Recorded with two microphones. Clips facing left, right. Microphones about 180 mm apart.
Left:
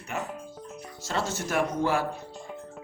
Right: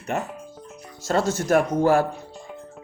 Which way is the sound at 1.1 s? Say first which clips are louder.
Right 9 dB; 45° right (ahead or behind).